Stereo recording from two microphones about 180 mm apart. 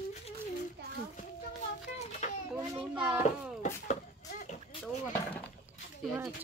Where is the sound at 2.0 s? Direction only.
40° left (ahead or behind).